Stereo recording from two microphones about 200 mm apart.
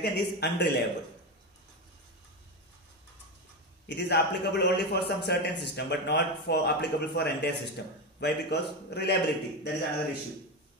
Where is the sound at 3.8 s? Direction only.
60° left (ahead or behind).